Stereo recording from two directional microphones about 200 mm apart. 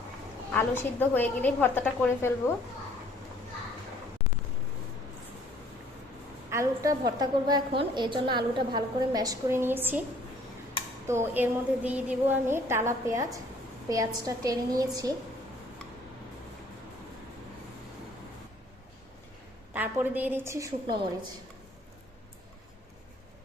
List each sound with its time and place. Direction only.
0.5 s a woman's voice: 10° left (ahead or behind)
6.5 s a woman's voice: 15° right (ahead or behind)
11.1 s a woman's voice: 10° right (ahead or behind)
19.7 s a woman's voice: 10° right (ahead or behind)